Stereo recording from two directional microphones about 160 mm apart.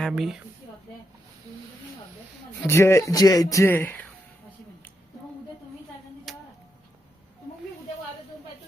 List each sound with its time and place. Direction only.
0.0 s a woman's voice: 5° right (ahead or behind)
2.6 s speech: 15° left (ahead or behind)
6.3 s music: centre (ahead or behind)